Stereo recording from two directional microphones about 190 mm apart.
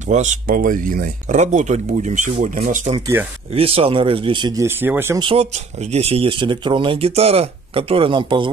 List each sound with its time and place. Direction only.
0.1 s speech: 40° right (ahead or behind); by 5.2 s 10° right (ahead or behind)
5.2 s speech: 30° right (ahead or behind)